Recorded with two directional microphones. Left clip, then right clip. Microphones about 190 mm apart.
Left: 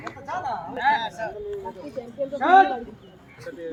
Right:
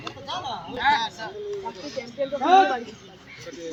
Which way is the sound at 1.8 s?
5° left (ahead or behind).